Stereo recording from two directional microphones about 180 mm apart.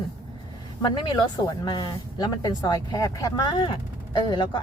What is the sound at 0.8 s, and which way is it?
Speech, 25° left (ahead or behind).